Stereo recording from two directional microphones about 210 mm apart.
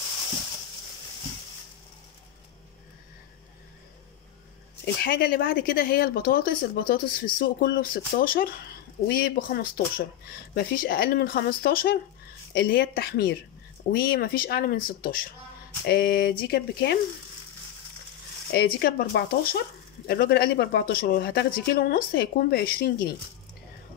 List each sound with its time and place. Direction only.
5.0 s speech: 45° left (ahead or behind)
18.5 s speech: 50° left (ahead or behind)